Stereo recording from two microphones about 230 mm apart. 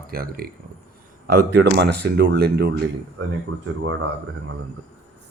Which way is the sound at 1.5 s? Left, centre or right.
Right.